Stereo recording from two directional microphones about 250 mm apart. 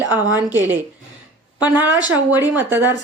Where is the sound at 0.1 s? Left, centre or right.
Centre.